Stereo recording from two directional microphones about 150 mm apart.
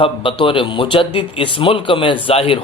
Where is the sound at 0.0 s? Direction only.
35° left (ahead or behind).